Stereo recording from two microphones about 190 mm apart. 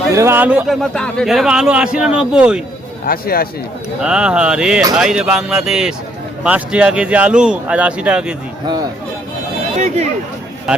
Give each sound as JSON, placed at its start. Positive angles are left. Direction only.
{"t": 0.1, "sound": "speech", "side_deg": -15}
{"t": 3.1, "sound": "speech", "side_deg": 50}
{"t": 4.0, "sound": "speech", "side_deg": -5}
{"t": 9.7, "sound": "speech", "side_deg": -35}